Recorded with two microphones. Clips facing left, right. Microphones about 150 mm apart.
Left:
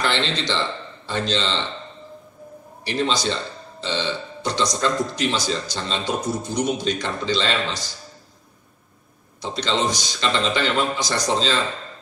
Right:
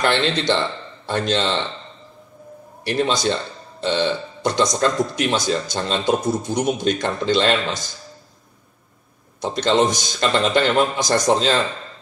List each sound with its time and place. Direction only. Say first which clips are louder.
0.0 s a man's voice: right 4 dB; 55° right (ahead or behind)
2.8 s speech: right 3 dB; 50° right (ahead or behind)
3.8 s burping: right 6 dB; 50° right (ahead or behind)
4.8 s speech: right 2 dB; 50° right (ahead or behind)
9.4 s speech: right 6 dB; 50° right (ahead or behind)